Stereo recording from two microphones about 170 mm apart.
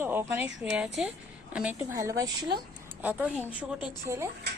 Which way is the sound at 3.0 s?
10° right (ahead or behind).